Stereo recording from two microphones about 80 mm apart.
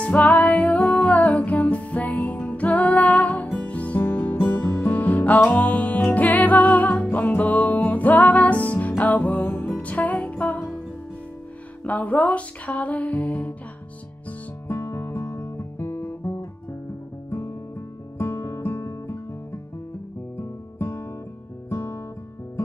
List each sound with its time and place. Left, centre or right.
0.0 s music: centre
11.8 s music: centre
14.7 s music: left
20.3 s music: left